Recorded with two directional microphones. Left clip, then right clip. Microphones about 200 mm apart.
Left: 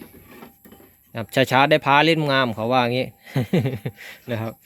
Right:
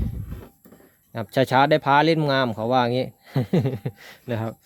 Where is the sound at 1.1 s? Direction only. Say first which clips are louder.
Left 1 dB; centre (ahead or behind).